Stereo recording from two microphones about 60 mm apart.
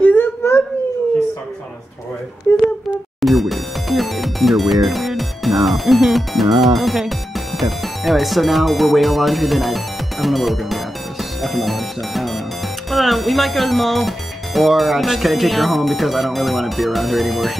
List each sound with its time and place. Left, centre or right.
0.2 s a sound: left
2.5 s a sound: left
3.2 s music: centre
10.2 s speech: centre
11.4 s music: centre
12.9 s speech: centre